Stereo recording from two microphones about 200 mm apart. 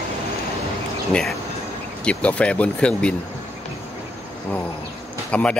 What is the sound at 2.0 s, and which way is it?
Speech, 5° left (ahead or behind).